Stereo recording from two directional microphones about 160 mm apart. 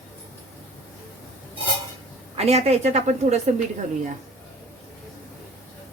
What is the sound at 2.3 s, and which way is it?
A woman's voice, 40° right (ahead or behind).